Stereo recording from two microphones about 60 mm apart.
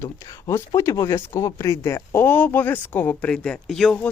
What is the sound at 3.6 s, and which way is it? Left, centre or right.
Speech, centre.